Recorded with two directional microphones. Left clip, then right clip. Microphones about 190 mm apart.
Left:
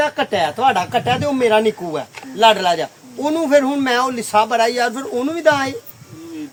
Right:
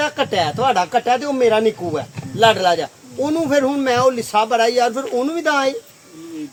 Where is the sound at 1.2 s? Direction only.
40° left (ahead or behind).